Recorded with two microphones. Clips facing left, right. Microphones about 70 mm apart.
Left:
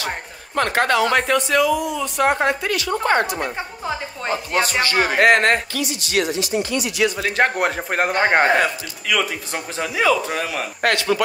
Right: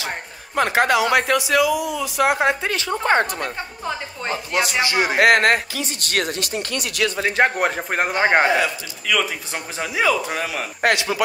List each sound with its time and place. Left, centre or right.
0.6 s speech: centre
2.4 s speech: right
3.8 s a woman's voice: centre
4.8 s speech: left
5.1 s speech: centre
5.9 s speech: right
7.3 s speech: centre
8.2 s a man's voice: centre
8.5 s speech: left
9.0 s speech: centre
10.8 s a man's voice: centre